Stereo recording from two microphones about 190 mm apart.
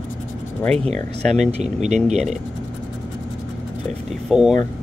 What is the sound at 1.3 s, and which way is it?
Speech, 35° right (ahead or behind).